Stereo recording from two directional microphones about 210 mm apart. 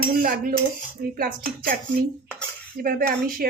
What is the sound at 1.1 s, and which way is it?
Speech, 45° right (ahead or behind).